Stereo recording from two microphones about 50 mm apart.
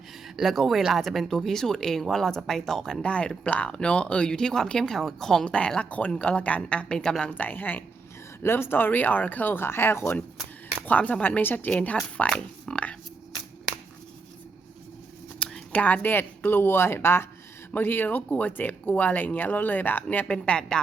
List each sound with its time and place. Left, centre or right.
0.4 s speech: centre
3.1 s speech: left
6.9 s speech: centre
7.3 s speech: left
8.4 s speech: left
10.8 s speech: left
15.7 s speech: left
17.7 s speech: left
20.2 s speech: centre